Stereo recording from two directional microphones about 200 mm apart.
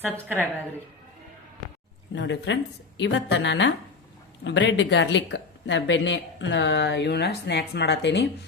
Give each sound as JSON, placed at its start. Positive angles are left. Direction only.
{"t": 0.0, "sound": "a woman's voice", "side_deg": -10}
{"t": 2.1, "sound": "a woman's voice", "side_deg": 65}